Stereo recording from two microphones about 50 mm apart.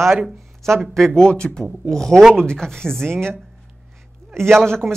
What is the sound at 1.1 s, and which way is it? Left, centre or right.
Speech, centre.